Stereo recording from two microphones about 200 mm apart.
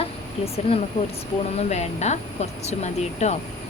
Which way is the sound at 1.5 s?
35° left (ahead or behind).